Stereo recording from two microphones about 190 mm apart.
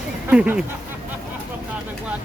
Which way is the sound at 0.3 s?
10° right (ahead or behind).